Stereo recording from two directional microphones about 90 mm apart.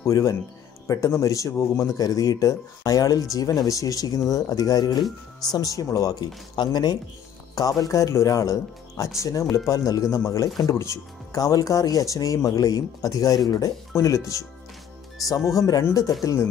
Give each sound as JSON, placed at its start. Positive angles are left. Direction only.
{"t": 0.0, "sound": "speech", "side_deg": 35}
{"t": 6.5, "sound": "speech", "side_deg": 50}